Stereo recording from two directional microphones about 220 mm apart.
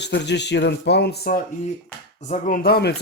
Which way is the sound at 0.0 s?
50° left (ahead or behind).